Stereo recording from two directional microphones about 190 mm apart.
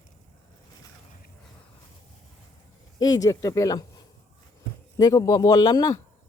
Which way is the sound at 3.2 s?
15° left (ahead or behind).